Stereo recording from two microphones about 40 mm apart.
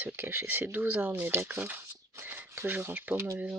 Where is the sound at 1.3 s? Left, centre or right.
Right.